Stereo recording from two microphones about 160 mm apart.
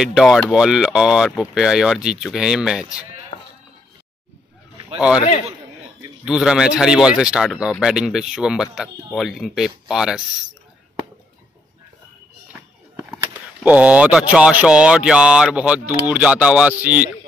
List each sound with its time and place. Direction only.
0.0 s speech: 5° right (ahead or behind)
3.3 s music: 45° left (ahead or behind)
4.9 s a man's voice: 5° right (ahead or behind)
6.2 s speech: 5° right (ahead or behind)
13.3 s speech: 10° right (ahead or behind)